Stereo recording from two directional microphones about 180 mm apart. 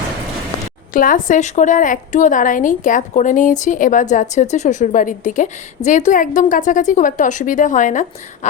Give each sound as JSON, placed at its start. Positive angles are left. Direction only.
{"t": 0.9, "sound": "a woman's voice", "side_deg": 50}